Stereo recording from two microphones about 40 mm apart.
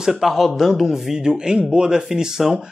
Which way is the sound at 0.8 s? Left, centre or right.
Centre.